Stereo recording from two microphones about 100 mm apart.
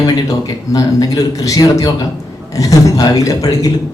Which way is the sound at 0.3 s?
35° left (ahead or behind).